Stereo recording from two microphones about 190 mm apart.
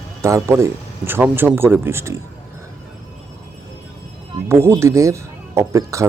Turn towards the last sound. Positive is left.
turn(degrees=-15)  # may be behind; listen again after turning